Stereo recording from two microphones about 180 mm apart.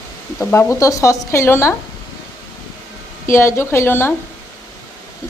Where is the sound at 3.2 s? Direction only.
15° left (ahead or behind).